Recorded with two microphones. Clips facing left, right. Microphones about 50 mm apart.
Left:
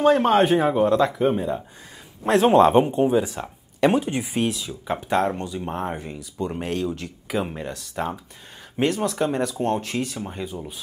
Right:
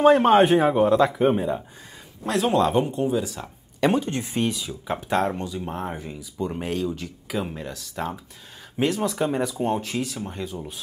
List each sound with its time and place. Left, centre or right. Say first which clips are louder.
0.0 s a man's voice: right 2 dB; centre
2.2 s speech: left 6 dB; left
3.8 s speech: left 2 dB; centre
6.5 s speech: left 1 dB; centre